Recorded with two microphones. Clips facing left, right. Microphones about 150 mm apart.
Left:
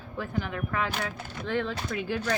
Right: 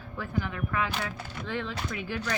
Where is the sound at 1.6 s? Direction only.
40° left (ahead or behind).